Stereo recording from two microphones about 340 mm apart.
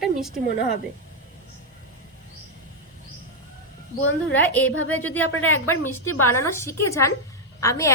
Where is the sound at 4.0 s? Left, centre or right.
Left.